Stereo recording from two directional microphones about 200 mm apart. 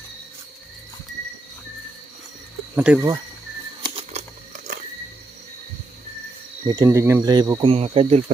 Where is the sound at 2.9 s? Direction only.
5° right (ahead or behind).